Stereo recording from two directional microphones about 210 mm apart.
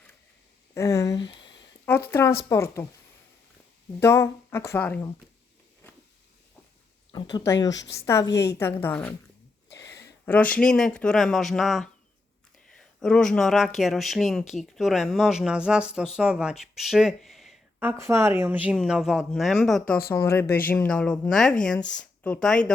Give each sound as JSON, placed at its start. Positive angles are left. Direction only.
{"t": 0.7, "sound": "a sound", "side_deg": 15}
{"t": 2.0, "sound": "speech", "side_deg": 10}
{"t": 4.0, "sound": "speech", "side_deg": 15}
{"t": 7.1, "sound": "speech", "side_deg": 20}
{"t": 7.7, "sound": "speech", "side_deg": 55}
{"t": 8.0, "sound": "speech", "side_deg": 15}
{"t": 19.9, "sound": "speech", "side_deg": 15}